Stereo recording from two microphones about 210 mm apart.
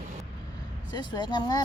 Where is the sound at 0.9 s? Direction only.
20° left (ahead or behind).